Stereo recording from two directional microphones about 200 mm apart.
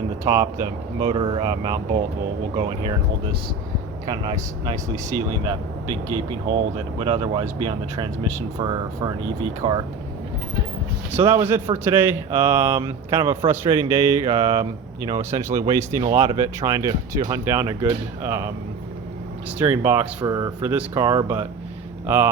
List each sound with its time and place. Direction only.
0.3 s speech: 20° right (ahead or behind)
4.0 s speech: 20° right (ahead or behind)
5.1 s speech: 15° left (ahead or behind)
7.0 s speech: 25° right (ahead or behind)
11.1 s speech: 15° right (ahead or behind)
19.5 s speech: 10° right (ahead or behind)